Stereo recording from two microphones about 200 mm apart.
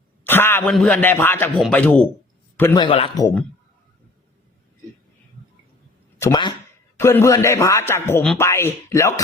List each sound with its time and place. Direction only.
0.3 s a man's voice: 10° left (ahead or behind)
2.7 s a man's voice: 25° left (ahead or behind)
6.1 s a man's voice: 15° left (ahead or behind)